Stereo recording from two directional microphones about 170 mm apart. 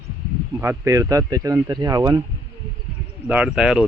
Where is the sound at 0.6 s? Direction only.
15° right (ahead or behind).